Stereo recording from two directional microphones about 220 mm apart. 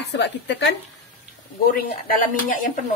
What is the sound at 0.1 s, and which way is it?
Speech, 55° left (ahead or behind).